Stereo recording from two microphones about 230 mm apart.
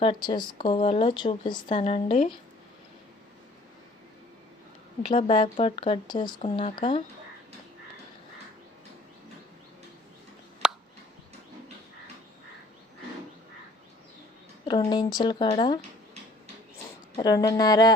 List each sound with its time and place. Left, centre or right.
0.0 s speech: left
5.0 s speech: left
10.6 s a sound: centre
14.7 s speech: centre
17.2 s speech: centre